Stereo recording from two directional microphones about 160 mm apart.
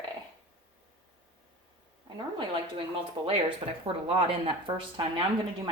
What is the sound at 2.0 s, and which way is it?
A woman's voice, 30° right (ahead or behind).